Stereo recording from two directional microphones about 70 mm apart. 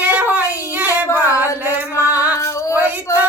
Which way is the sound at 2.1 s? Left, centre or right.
Right.